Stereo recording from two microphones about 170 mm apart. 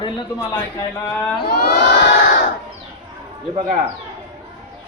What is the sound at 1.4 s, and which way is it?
Crowd, 65° left (ahead or behind).